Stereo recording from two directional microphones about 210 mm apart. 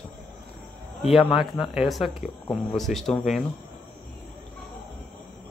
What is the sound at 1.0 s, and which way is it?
Speech, 25° left (ahead or behind).